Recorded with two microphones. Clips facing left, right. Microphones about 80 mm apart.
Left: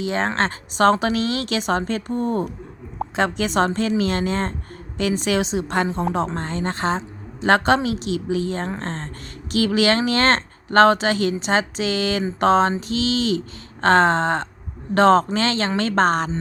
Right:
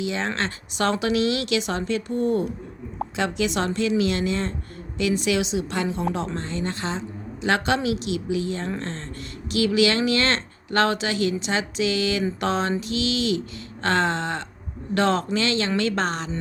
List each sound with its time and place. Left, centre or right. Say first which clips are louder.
0.0 s speech: left 4 dB; left